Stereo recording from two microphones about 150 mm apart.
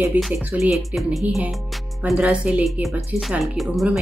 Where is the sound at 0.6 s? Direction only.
Centre (ahead or behind).